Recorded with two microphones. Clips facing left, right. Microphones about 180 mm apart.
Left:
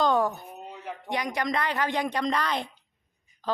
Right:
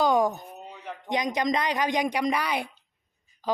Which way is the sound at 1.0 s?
20° right (ahead or behind).